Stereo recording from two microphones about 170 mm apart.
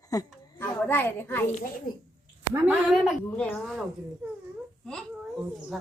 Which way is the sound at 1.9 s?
55° left (ahead or behind).